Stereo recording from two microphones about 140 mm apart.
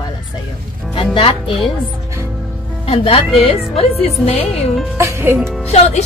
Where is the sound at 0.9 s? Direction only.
40° left (ahead or behind).